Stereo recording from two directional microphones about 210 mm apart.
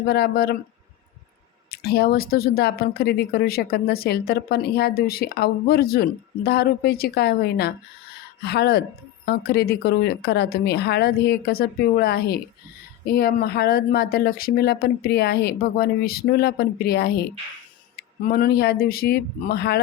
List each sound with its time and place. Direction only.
0.0 s speech: 50° left (ahead or behind)
1.7 s speech: 50° left (ahead or behind)